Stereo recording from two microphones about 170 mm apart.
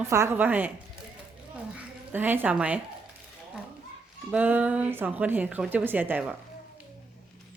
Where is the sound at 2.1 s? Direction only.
10° right (ahead or behind).